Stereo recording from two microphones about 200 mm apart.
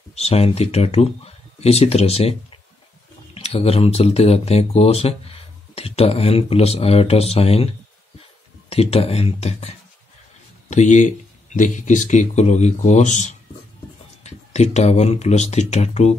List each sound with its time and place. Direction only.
0.1 s speech: 30° left (ahead or behind)
3.3 s speech: 30° left (ahead or behind)